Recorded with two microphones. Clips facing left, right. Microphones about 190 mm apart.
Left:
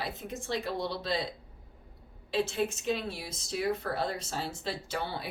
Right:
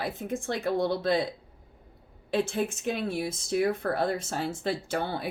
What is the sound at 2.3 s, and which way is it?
Speech, 50° right (ahead or behind).